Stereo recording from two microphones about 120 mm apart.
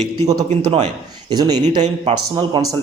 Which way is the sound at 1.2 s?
35° right (ahead or behind).